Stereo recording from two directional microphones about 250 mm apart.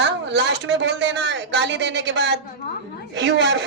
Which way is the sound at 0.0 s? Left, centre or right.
Right.